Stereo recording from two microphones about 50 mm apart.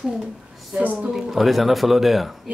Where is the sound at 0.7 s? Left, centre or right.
Right.